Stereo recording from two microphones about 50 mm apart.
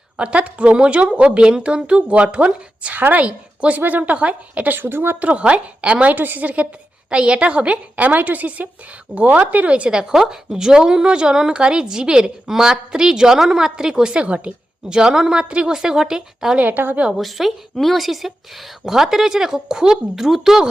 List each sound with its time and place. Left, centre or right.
0.2 s a woman's voice: right
2.9 s a woman's voice: right
4.8 s speech: right
5.2 s a woman's voice: right
10.0 s speech: centre
16.6 s a woman's voice: right
17.2 s speech: centre